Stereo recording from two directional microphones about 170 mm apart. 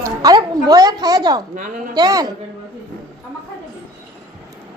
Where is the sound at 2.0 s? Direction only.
20° right (ahead or behind).